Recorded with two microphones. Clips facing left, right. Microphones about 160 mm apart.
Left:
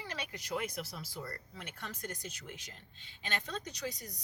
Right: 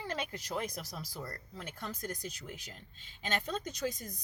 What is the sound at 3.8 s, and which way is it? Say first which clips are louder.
Speech: right 4 dB; 45° right (ahead or behind).